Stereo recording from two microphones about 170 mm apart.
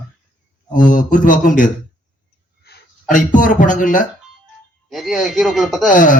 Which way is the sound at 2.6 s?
65° left (ahead or behind).